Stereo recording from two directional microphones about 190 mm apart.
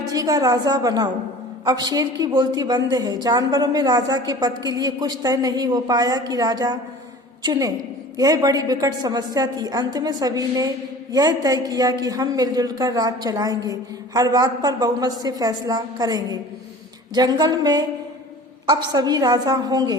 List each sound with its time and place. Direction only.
0.1 s a man's voice: 20° right (ahead or behind)